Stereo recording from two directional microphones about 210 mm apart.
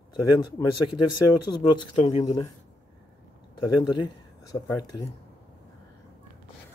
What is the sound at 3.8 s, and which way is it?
Speech, 20° left (ahead or behind).